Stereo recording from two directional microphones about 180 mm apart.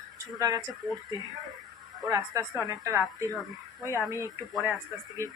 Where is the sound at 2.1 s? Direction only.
15° right (ahead or behind).